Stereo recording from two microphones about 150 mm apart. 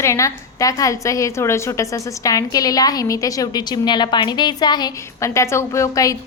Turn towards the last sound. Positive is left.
turn(degrees=20)  # may be behind; listen again after turning